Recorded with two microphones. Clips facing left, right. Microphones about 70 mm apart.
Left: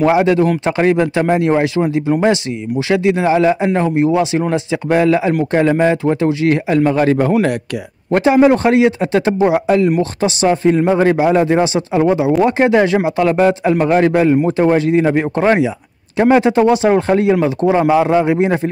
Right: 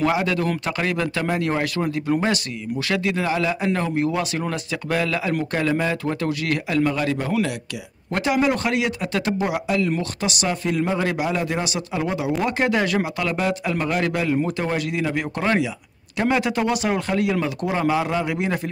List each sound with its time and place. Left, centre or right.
0.0 s a man's voice: left
8.1 s a man's voice: left